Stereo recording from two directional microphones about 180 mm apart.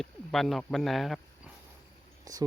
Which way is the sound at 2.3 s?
20° right (ahead or behind).